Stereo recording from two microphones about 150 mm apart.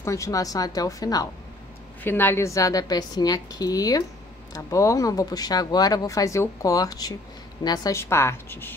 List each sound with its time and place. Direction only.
0.0 s a woman's voice: 20° left (ahead or behind)